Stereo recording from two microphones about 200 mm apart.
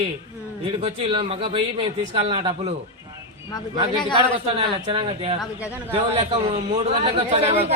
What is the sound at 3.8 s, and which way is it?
Speech, 25° right (ahead or behind).